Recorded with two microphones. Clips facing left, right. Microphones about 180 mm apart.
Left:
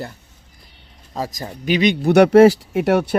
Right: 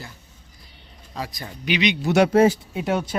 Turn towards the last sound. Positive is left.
turn(degrees=70)  # may be behind; listen again after turning